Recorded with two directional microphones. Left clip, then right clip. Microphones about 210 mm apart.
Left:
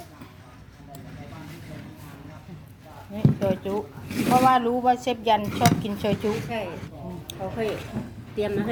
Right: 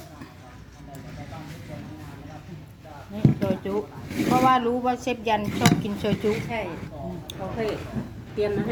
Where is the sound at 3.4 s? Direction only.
15° left (ahead or behind).